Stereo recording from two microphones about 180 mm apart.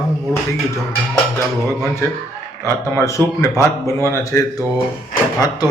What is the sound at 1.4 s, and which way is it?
Speech, 15° left (ahead or behind).